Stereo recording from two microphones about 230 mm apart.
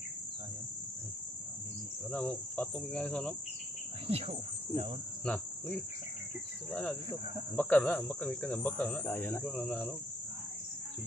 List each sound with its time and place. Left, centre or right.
2.1 s speech: centre
4.1 s speech: right
5.2 s cricket: centre
6.7 s speech: centre